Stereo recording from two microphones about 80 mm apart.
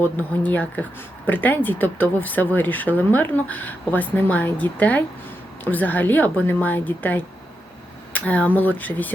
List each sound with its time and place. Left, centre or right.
0.0 s a woman's voice: left